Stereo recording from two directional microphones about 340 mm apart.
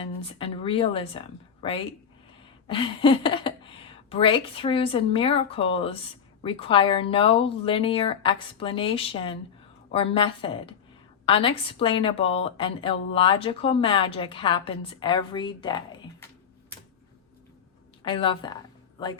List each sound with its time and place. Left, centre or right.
0.0 s speech: centre
2.6 s a woman's voice: centre
18.0 s a woman's voice: centre